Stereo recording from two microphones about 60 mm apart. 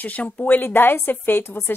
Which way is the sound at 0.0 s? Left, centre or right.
Left.